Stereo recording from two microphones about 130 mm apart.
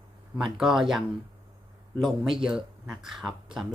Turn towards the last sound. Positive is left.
turn(degrees=-5)  # may be behind; listen again after turning